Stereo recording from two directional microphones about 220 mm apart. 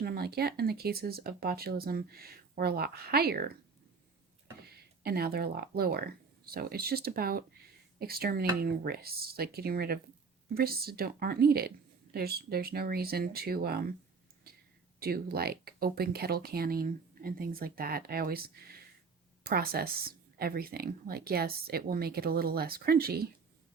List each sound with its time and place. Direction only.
0.0 s speech: 45° right (ahead or behind)
4.6 s speech: 45° right (ahead or behind)
14.9 s speech: 45° right (ahead or behind)